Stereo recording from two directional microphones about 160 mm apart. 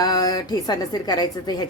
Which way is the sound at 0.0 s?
25° left (ahead or behind).